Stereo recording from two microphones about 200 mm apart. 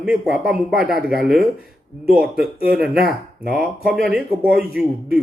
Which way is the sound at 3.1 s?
5° right (ahead or behind).